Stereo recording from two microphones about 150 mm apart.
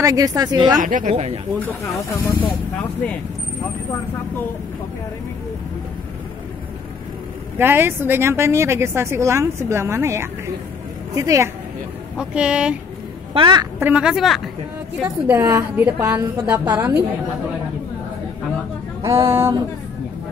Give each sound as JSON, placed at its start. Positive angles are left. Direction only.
{"t": 0.0, "sound": "a woman's voice", "side_deg": -25}
{"t": 0.8, "sound": "speech", "side_deg": -60}
{"t": 1.1, "sound": "speech", "side_deg": -45}
{"t": 1.7, "sound": "speech", "side_deg": 20}
{"t": 7.5, "sound": "a woman's voice", "side_deg": -15}
{"t": 12.2, "sound": "a woman's voice", "side_deg": -5}
{"t": 13.3, "sound": "a woman's voice", "side_deg": -35}
{"t": 13.7, "sound": "speech", "side_deg": -10}
{"t": 15.2, "sound": "a woman's voice", "side_deg": -20}
{"t": 19.0, "sound": "a woman's voice", "side_deg": -15}